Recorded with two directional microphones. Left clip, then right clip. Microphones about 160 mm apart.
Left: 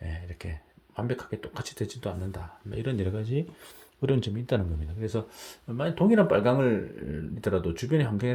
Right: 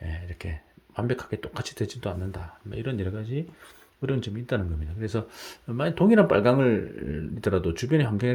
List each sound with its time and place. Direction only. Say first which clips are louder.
0.0 s a sound: right 2 dB; 15° right (ahead or behind)
0.9 s speech: right 3 dB; 30° right (ahead or behind); by 4.6 s centre (ahead or behind)
4.9 s speech: right 1 dB; 20° right (ahead or behind)